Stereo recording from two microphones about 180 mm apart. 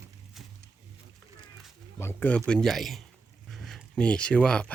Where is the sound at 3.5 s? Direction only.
Centre (ahead or behind).